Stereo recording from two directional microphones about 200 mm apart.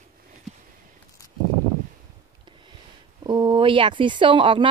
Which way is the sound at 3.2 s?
20° right (ahead or behind).